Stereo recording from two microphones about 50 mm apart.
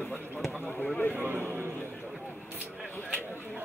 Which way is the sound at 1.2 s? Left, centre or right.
Right.